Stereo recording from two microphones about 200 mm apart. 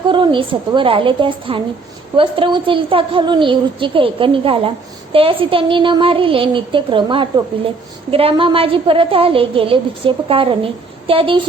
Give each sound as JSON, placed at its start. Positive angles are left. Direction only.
{"t": 0.1, "sound": "a woman's voice", "side_deg": -25}